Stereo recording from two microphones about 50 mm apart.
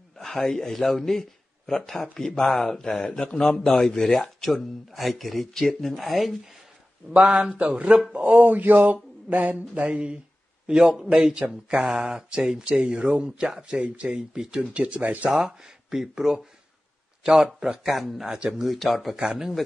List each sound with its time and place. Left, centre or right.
0.2 s speech: centre
7.1 s speech: right
8.3 s speech: right
9.8 s a man's voice: right
14.3 s a man's voice: centre
14.6 s speech: right
15.2 s a man's voice: centre